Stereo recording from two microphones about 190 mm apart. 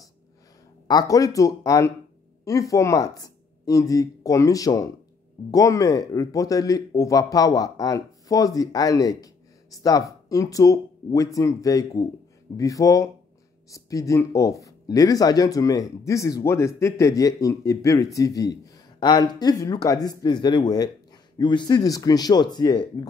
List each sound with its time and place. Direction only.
0.8 s speech: 20° left (ahead or behind)